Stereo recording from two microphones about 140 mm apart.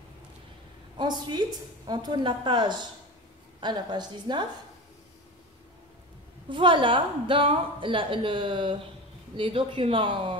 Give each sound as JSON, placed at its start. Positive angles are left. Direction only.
{"t": 0.9, "sound": "a woman's voice", "side_deg": -30}
{"t": 6.5, "sound": "a woman's voice", "side_deg": -35}